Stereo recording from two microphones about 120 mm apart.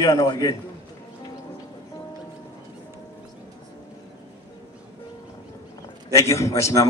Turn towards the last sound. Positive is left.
turn(degrees=25)  # may be behind; listen again after turning